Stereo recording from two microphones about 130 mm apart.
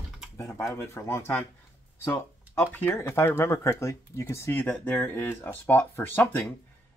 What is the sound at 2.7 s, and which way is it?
Speech, 15° left (ahead or behind).